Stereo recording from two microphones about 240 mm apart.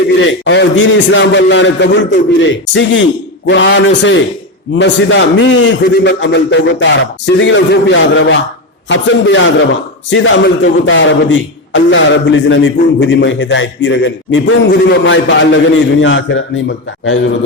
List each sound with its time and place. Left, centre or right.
0.2 s speech: left